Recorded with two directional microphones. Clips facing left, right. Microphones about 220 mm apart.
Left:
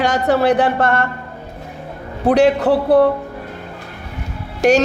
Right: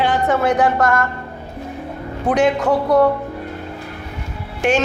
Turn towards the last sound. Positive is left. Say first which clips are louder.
# left 4 dB
turn(degrees=40)  # may be behind; listen again after turning